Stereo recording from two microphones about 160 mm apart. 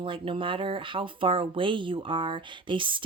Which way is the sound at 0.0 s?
35° right (ahead or behind).